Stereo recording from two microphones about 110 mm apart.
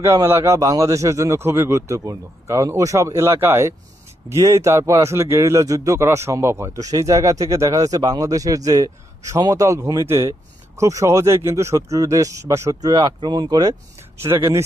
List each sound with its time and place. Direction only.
0.0 s a man's voice: 25° right (ahead or behind)
14.2 s a man's voice: 25° right (ahead or behind)